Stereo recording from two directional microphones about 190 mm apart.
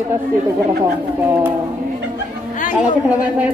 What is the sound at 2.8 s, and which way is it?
Speech, 5° right (ahead or behind).